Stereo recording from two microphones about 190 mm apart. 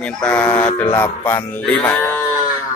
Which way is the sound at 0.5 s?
5° left (ahead or behind).